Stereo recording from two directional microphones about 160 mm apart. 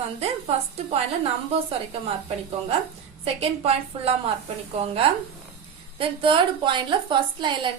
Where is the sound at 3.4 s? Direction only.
40° right (ahead or behind).